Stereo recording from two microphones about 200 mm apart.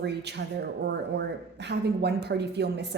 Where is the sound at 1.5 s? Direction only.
55° right (ahead or behind).